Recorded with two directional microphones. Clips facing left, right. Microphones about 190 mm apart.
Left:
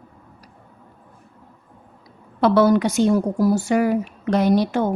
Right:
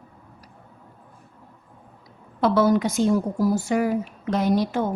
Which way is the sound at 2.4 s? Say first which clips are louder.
Left 3 dB; 70° left (ahead or behind).